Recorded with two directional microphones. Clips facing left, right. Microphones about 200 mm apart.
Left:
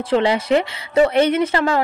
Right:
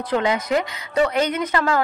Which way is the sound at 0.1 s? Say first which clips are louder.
Left 4 dB; 30° left (ahead or behind).